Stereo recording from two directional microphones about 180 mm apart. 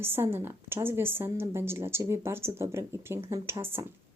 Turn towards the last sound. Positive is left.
turn(degrees=-15)  # may be behind; listen again after turning